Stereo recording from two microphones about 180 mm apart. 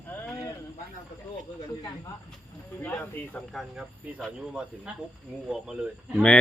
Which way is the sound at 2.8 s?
10° left (ahead or behind).